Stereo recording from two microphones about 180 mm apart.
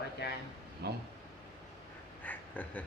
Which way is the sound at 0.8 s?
65° right (ahead or behind).